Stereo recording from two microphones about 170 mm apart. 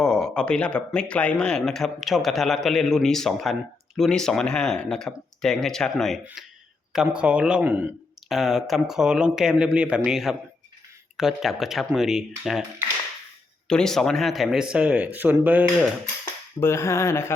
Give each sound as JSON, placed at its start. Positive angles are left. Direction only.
{"t": 0.0, "sound": "speech", "side_deg": 5}
{"t": 13.7, "sound": "speech", "side_deg": 5}
{"t": 16.6, "sound": "speech", "side_deg": 15}